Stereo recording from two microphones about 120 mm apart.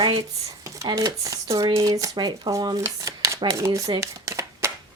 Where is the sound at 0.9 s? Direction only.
30° right (ahead or behind).